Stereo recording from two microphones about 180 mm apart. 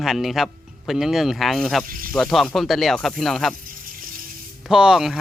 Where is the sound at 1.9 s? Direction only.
50° right (ahead or behind).